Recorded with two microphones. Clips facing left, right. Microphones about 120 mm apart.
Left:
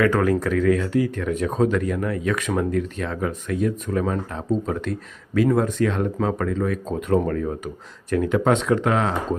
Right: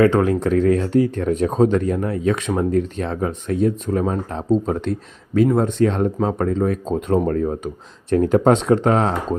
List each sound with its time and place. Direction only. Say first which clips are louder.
0.0 s speech: right 4 dB; 25° right (ahead or behind)